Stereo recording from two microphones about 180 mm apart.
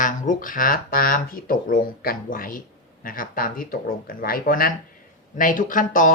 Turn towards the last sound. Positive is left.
turn(degrees=50)  # may be behind; listen again after turning